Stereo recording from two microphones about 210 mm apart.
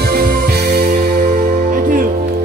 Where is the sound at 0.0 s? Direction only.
45° right (ahead or behind).